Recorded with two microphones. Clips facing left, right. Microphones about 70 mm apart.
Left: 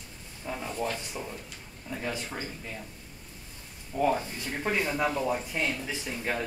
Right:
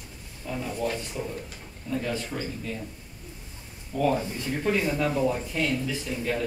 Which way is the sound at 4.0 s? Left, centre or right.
Left.